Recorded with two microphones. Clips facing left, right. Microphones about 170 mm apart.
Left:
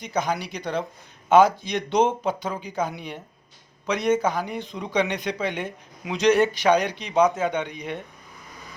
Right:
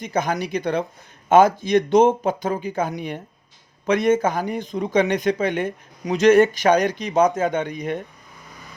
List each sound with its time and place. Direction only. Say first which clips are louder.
0.1 s speech: right 3 dB; 50° right (ahead or behind)